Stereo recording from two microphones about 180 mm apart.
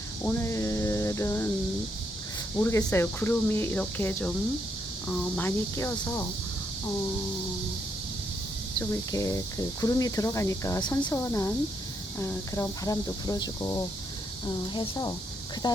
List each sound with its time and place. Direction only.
0.3 s music: 15° left (ahead or behind)
2.6 s speech: 15° left (ahead or behind)
8.8 s speech: 15° left (ahead or behind)